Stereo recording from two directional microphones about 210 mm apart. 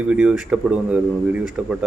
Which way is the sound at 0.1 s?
5° right (ahead or behind).